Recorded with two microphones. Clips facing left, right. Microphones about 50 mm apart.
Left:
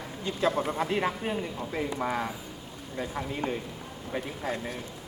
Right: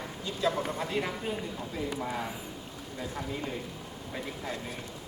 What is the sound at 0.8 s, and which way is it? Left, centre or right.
Speech, left.